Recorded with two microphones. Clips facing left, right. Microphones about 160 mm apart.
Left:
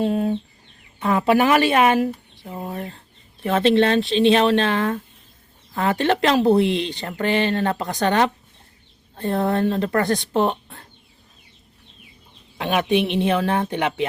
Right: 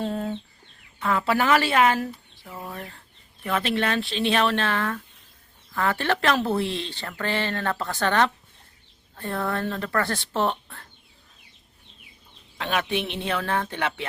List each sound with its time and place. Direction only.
0.0 s chicken: 15° left (ahead or behind)
0.9 s speech: 20° left (ahead or behind)
12.5 s speech: 15° left (ahead or behind)